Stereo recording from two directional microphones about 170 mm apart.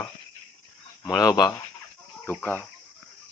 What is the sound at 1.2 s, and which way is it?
Speech, 20° left (ahead or behind).